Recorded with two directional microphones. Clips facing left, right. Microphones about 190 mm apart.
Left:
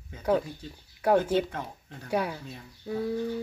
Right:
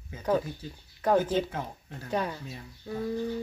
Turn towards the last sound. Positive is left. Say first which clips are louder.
# left 2 dB
turn(degrees=5)  # may be behind; listen again after turning